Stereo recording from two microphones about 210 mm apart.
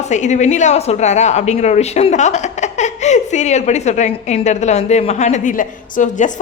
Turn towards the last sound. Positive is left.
turn(degrees=35)  # may be behind; listen again after turning